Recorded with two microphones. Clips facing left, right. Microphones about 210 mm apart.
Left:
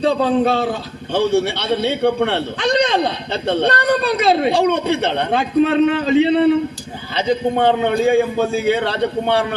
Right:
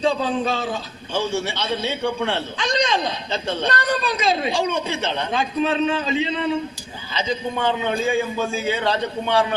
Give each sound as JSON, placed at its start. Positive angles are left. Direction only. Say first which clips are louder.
{"t": 0.0, "sound": "a man's voice", "louder": "left 6 dB", "side_deg": 60}